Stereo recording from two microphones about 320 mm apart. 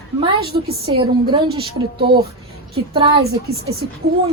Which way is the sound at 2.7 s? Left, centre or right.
Centre.